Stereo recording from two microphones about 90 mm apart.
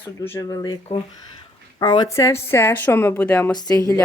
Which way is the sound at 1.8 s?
50° left (ahead or behind).